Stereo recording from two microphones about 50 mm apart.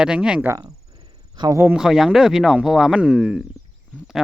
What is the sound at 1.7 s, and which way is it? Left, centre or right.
Speech, centre.